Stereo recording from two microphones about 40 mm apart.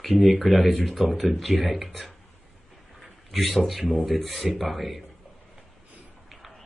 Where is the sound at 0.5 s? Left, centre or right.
Centre.